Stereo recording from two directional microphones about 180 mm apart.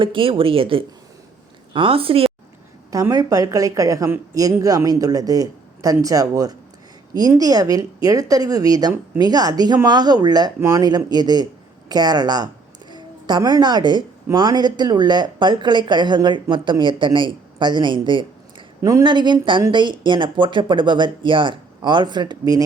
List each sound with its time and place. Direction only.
0.0 s a woman's voice: 30° right (ahead or behind)
2.9 s speech: 20° right (ahead or behind)